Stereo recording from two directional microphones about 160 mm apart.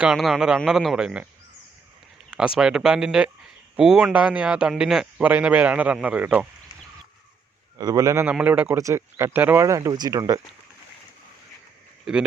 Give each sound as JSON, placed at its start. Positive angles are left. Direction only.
{"t": 0.0, "sound": "speech", "side_deg": 0}
{"t": 2.6, "sound": "a man's voice", "side_deg": -5}
{"t": 7.8, "sound": "a man's voice", "side_deg": -25}
{"t": 12.1, "sound": "speech", "side_deg": -5}